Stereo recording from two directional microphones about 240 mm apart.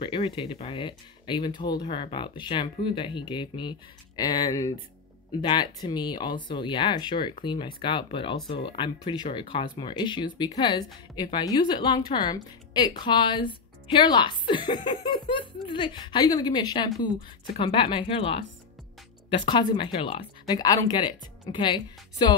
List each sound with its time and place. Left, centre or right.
0.0 s a woman's voice: left